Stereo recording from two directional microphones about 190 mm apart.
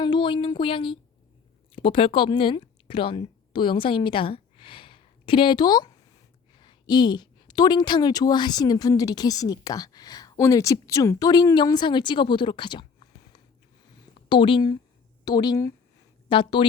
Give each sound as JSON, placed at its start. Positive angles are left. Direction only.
{"t": 0.0, "sound": "a woman's voice", "side_deg": 25}